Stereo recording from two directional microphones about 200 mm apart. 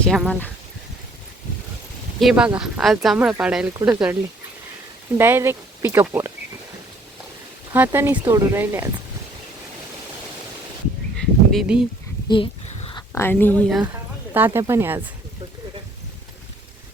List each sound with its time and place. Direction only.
0.0 s speech: 5° left (ahead or behind)
2.1 s speech: 5° right (ahead or behind)
7.7 s speech: 10° right (ahead or behind)
11.2 s a sound: centre (ahead or behind)
12.3 s a sound: 30° left (ahead or behind)
13.1 s a woman's voice: 10° left (ahead or behind)
14.3 s speech: 10° right (ahead or behind)